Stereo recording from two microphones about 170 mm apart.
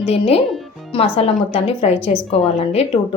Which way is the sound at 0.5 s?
Centre (ahead or behind).